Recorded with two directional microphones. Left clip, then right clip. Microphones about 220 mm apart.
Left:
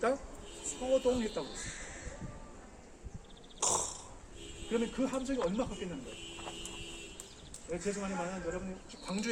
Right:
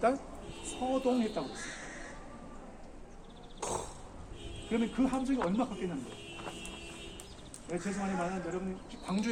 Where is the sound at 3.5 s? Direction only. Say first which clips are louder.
Left 3 dB; 15° left (ahead or behind).